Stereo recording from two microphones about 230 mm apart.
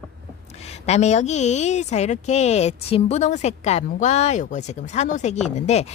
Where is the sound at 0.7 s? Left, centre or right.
Left.